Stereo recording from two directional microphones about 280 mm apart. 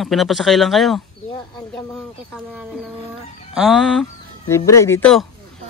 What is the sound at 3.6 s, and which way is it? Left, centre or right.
Speech, centre.